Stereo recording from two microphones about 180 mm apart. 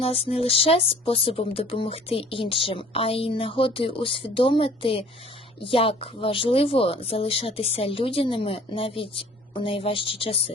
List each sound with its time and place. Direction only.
0.0 s speech: 35° left (ahead or behind)